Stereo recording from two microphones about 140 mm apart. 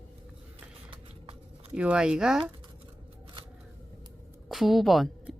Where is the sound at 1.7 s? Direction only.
5° right (ahead or behind).